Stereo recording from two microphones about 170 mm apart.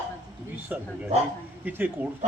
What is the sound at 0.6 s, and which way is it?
A man's voice, 10° right (ahead or behind).